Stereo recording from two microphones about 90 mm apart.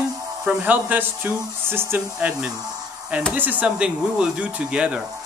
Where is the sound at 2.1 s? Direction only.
10° right (ahead or behind).